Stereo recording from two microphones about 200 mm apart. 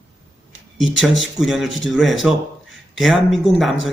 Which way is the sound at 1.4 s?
Centre (ahead or behind).